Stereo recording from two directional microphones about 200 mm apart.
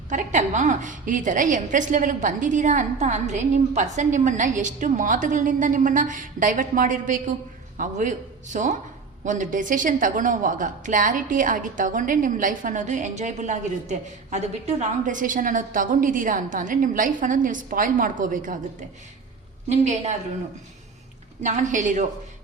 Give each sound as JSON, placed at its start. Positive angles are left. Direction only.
{"t": 0.1, "sound": "a woman's voice", "side_deg": -40}
{"t": 21.4, "sound": "a woman's voice", "side_deg": -40}